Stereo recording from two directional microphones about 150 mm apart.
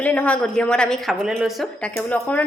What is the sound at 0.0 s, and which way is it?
A woman's voice, 10° left (ahead or behind).